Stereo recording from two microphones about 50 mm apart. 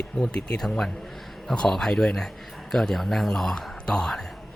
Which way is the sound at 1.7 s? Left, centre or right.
Centre.